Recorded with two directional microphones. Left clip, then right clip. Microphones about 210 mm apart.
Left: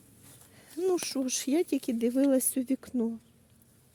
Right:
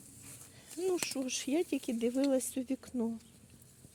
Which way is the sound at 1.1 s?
55° left (ahead or behind).